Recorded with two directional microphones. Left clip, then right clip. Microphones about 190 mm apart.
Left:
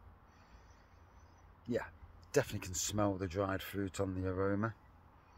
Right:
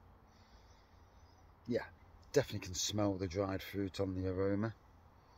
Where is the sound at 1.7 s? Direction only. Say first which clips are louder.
Even; centre (ahead or behind).